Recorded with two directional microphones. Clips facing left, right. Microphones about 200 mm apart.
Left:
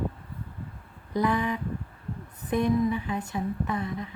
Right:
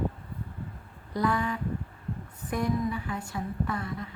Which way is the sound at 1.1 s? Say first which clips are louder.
Left 2 dB; 20° left (ahead or behind).